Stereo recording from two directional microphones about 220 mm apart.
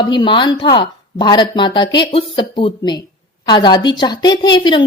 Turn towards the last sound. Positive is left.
turn(degrees=20)  # may be behind; listen again after turning